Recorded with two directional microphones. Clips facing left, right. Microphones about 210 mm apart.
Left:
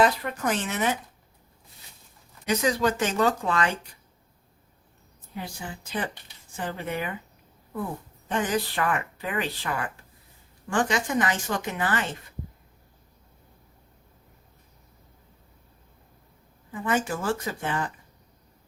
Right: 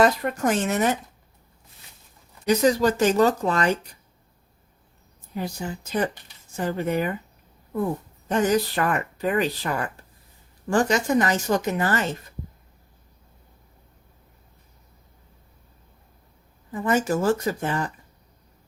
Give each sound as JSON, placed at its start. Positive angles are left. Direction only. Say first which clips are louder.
{"t": 0.0, "sound": "speech", "louder": "right 3 dB", "side_deg": -45}
{"t": 2.5, "sound": "speech", "louder": "right 5 dB", "side_deg": -35}
{"t": 5.3, "sound": "speech", "louder": "right 6 dB", "side_deg": -40}
{"t": 8.3, "sound": "speech", "louder": "right 6 dB", "side_deg": -40}
{"t": 16.7, "sound": "speech", "louder": "right 5 dB", "side_deg": -40}